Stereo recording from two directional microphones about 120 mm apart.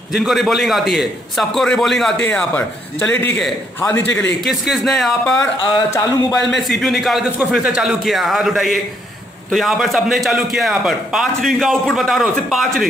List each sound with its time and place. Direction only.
0.1 s a man's voice: centre (ahead or behind); by 4.3 s 20° left (ahead or behind)
4.5 s a man's voice: centre (ahead or behind)
6.5 s a man's voice: centre (ahead or behind)